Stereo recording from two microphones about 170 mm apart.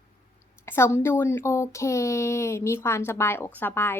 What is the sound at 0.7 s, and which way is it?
Speech, 15° left (ahead or behind).